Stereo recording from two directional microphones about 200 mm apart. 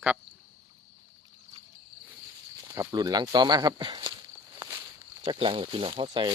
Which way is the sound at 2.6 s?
15° right (ahead or behind).